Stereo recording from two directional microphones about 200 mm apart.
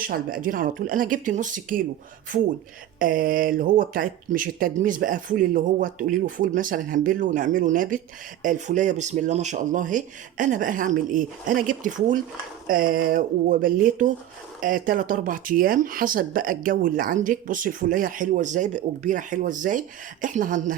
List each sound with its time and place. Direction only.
0.0 s speech: 45° right (ahead or behind)
3.0 s speech: 45° right (ahead or behind)